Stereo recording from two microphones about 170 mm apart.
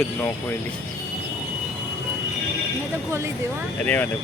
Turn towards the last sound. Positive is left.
turn(degrees=10)  # may be behind; listen again after turning